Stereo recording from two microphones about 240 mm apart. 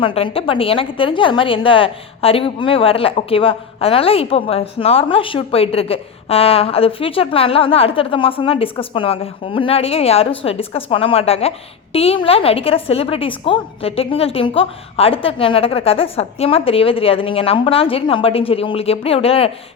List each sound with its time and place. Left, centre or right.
0.0 s a woman's voice: left